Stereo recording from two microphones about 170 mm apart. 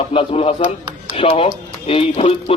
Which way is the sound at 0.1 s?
30° left (ahead or behind).